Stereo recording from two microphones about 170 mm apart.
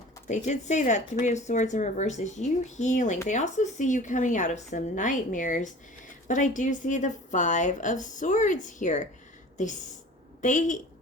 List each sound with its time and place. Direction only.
0.3 s speech: 45° left (ahead or behind)